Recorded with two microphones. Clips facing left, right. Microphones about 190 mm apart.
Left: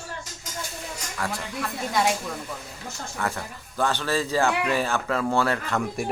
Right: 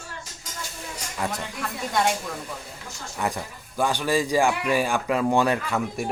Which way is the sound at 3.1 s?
15° right (ahead or behind).